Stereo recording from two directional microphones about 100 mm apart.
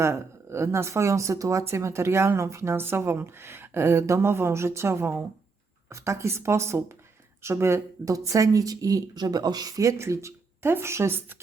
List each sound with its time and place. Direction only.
0.0 s speech: 25° right (ahead or behind)